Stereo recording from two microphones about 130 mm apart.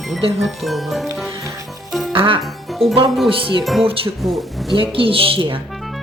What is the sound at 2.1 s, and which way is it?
Speech, 45° right (ahead or behind).